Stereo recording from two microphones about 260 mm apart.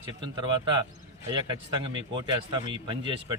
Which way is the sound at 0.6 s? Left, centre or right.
Centre.